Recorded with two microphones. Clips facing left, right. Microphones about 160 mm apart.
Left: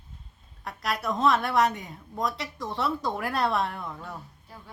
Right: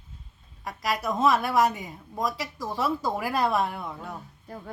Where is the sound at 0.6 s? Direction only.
Centre (ahead or behind).